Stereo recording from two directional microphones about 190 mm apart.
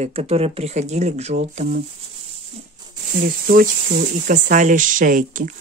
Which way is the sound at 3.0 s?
45° right (ahead or behind).